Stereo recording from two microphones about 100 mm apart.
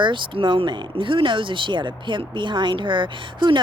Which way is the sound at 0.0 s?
55° right (ahead or behind).